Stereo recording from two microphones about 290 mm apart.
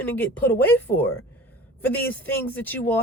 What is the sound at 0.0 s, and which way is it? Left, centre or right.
Speech, centre.